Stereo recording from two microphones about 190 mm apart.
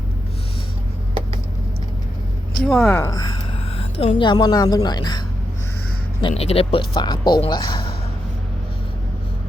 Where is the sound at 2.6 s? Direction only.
5° left (ahead or behind); by 4.1 s 30° left (ahead or behind).